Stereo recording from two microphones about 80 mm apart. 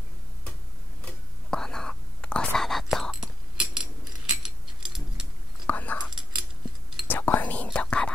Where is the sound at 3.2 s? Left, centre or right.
Centre.